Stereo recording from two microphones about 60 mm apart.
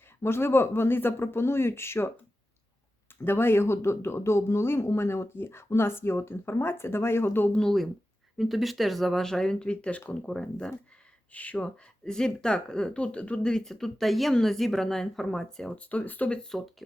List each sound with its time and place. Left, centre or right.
0.2 s speech: left
3.2 s speech: left
7.5 s speech: centre
8.4 s speech: centre
11.3 s speech: left
12.0 s speech: centre
15.7 s speech: left
16.3 s speech: centre